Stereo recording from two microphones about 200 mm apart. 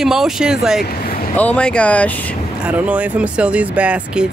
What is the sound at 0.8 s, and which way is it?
Vehicle, 50° left (ahead or behind).